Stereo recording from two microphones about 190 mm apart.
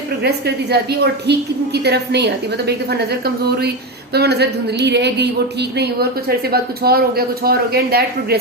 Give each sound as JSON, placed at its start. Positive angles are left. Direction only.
{"t": 0.2, "sound": "a woman's voice", "side_deg": -60}